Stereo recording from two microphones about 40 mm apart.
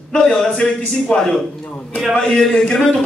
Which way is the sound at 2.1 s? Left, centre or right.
Centre.